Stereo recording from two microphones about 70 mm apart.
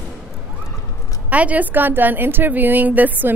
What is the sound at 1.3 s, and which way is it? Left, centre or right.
A woman's voice, right.